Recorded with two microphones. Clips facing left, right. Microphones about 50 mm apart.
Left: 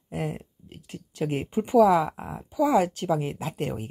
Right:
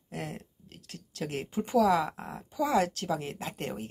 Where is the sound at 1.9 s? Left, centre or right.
Centre.